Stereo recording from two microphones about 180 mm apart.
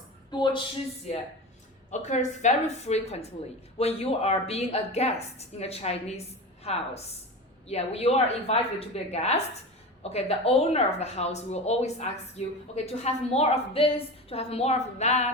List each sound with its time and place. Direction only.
0.3 s a woman's voice: 25° left (ahead or behind)
1.9 s a woman's voice: 40° left (ahead or behind)